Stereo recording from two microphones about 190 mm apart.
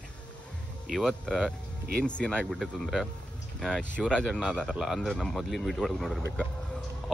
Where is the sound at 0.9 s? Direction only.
5° left (ahead or behind).